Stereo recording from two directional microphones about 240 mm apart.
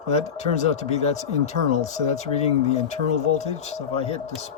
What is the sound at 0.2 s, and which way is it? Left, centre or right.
Speech, left.